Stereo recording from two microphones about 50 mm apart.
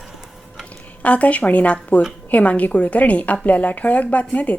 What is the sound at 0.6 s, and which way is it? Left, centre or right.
A woman's voice, left.